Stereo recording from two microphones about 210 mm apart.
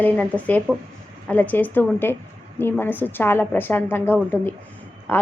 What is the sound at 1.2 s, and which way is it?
A woman's voice, 5° left (ahead or behind).